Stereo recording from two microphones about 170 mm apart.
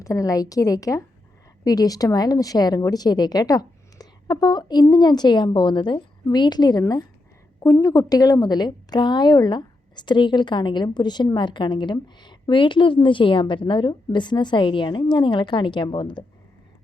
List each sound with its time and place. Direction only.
0.0 s a woman's voice: 20° left (ahead or behind)